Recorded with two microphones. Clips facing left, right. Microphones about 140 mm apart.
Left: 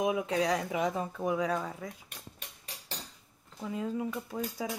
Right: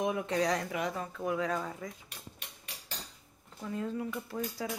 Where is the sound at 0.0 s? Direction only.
10° left (ahead or behind).